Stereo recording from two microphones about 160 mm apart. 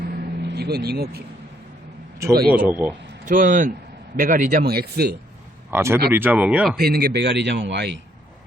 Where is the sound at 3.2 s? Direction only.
55° right (ahead or behind).